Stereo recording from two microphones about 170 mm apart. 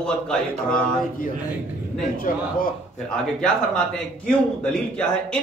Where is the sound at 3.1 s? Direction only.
5° left (ahead or behind).